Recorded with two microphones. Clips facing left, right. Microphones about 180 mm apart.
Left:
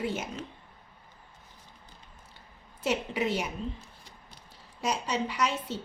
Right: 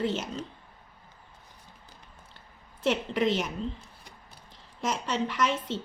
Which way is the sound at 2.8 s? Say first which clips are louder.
Right 3 dB; 10° left (ahead or behind).